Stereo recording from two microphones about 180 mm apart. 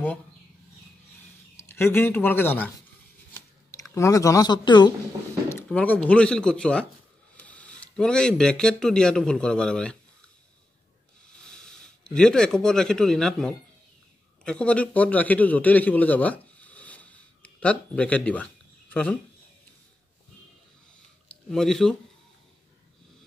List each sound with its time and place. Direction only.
1.6 s speech: 15° left (ahead or behind)
3.3 s computer keyboard: 15° left (ahead or behind)
5.5 s speech: 10° left (ahead or behind)
11.3 s a man's voice: 5° left (ahead or behind)
21.3 s speech: 5° left (ahead or behind)